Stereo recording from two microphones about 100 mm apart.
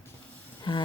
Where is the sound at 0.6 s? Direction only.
55° left (ahead or behind).